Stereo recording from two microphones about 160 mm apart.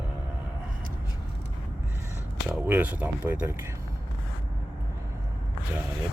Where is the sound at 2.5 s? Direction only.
10° right (ahead or behind).